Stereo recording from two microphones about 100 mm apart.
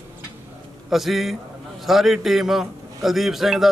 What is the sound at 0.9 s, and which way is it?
A man's voice, centre (ahead or behind).